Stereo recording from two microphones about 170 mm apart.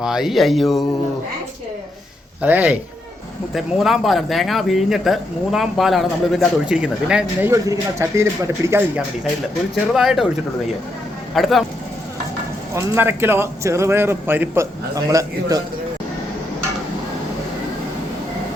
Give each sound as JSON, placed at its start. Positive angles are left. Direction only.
{"t": 0.0, "sound": "speech", "side_deg": -5}
{"t": 2.4, "sound": "a man's voice", "side_deg": -10}
{"t": 7.5, "sound": "a man's voice", "side_deg": -15}
{"t": 9.9, "sound": "speech", "side_deg": 0}
{"t": 11.3, "sound": "speech", "side_deg": 0}
{"t": 12.7, "sound": "a man's voice", "side_deg": -15}